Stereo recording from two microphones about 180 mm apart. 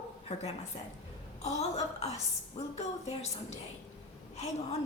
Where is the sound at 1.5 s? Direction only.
40° left (ahead or behind).